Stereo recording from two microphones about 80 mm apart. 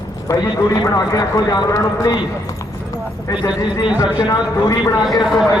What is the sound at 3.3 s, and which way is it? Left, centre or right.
Speech, left.